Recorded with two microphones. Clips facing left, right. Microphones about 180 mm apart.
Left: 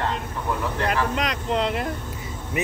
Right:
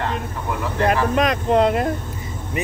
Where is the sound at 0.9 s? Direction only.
50° right (ahead or behind).